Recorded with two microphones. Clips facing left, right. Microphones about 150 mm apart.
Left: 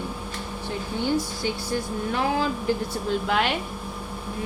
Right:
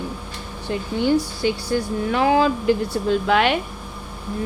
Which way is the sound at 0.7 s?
75° right (ahead or behind).